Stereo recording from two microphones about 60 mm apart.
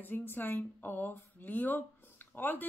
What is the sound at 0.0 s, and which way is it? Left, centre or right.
Speech, left.